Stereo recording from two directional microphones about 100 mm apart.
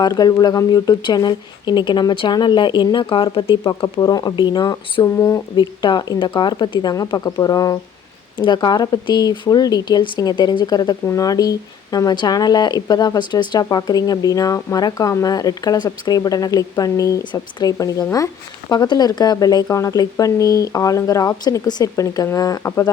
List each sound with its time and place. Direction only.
0.0 s speech: 40° left (ahead or behind)
4.1 s speech: 40° left (ahead or behind)
5.0 s speech: 30° left (ahead or behind)
5.5 s speech: 50° left (ahead or behind)
8.4 s speech: 50° left (ahead or behind)
11.0 s speech: 35° left (ahead or behind)